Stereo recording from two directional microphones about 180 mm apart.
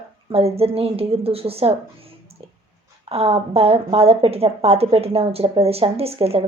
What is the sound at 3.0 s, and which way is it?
Speech, 35° right (ahead or behind).